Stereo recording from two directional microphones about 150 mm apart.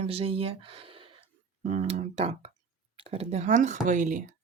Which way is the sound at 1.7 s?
50° right (ahead or behind).